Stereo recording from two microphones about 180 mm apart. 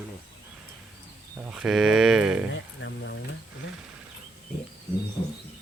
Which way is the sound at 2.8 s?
90° left.